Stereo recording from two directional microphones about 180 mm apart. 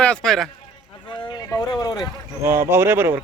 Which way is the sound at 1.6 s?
20° left (ahead or behind).